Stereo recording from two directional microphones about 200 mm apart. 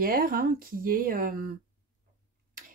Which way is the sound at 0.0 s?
45° right (ahead or behind).